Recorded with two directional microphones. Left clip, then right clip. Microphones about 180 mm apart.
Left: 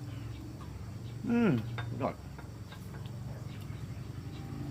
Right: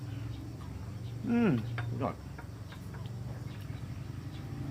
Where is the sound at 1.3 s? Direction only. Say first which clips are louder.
Even; 20° left (ahead or behind).